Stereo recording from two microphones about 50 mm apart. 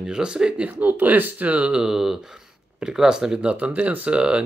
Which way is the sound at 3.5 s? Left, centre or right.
Right.